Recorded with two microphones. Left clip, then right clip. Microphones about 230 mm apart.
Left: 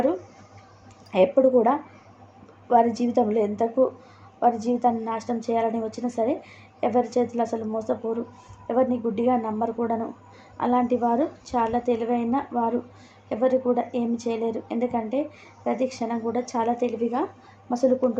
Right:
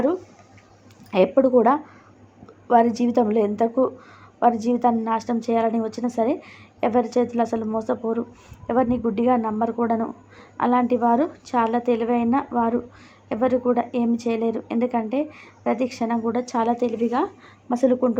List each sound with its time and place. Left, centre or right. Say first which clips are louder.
1.1 s a woman's voice: right 1 dB; right